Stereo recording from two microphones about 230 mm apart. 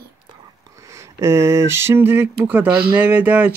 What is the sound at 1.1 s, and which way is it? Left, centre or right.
Speech, centre.